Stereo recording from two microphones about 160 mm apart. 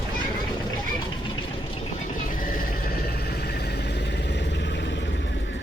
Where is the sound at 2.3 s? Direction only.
55° left (ahead or behind).